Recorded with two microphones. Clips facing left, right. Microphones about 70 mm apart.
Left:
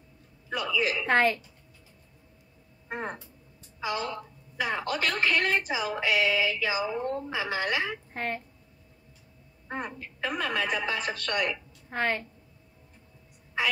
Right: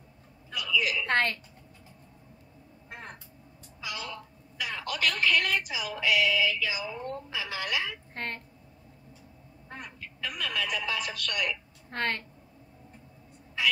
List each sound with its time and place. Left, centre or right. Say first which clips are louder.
0.5 s a sound: left 2 dB; left
1.0 s a woman's voice: left 4 dB; centre
2.9 s a woman's voice: left 9 dB; left
8.1 s speech: left 4 dB; centre
9.7 s a woman's voice: left 8 dB; left
11.9 s a woman's voice: left 3 dB; centre